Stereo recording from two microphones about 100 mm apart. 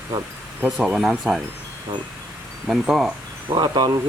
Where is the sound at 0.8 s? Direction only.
10° right (ahead or behind).